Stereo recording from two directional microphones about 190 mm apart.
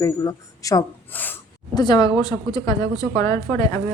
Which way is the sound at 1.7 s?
20° left (ahead or behind).